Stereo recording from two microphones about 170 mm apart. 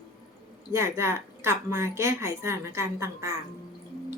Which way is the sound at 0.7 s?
15° right (ahead or behind).